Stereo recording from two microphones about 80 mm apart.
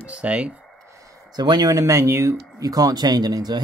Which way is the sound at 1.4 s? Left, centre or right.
Right.